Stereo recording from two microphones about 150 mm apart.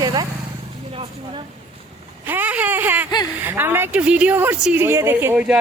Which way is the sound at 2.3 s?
10° right (ahead or behind).